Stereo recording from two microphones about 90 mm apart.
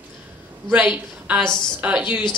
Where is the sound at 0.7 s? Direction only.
10° right (ahead or behind).